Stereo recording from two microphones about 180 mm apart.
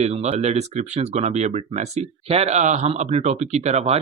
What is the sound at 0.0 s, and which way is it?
Speech, 35° right (ahead or behind).